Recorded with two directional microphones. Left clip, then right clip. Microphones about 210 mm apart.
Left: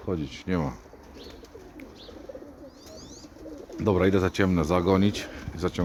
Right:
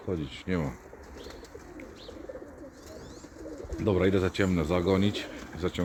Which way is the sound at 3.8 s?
30° left (ahead or behind).